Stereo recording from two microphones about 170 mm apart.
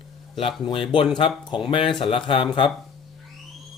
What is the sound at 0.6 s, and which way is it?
Speech, 30° left (ahead or behind).